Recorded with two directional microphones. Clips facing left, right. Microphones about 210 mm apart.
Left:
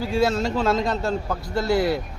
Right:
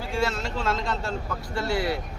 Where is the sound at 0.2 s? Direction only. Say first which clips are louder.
Left 7 dB; 40° left (ahead or behind).